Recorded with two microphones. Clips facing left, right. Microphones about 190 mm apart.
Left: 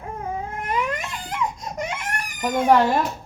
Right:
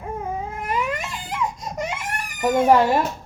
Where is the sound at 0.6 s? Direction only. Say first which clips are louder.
Even; centre (ahead or behind).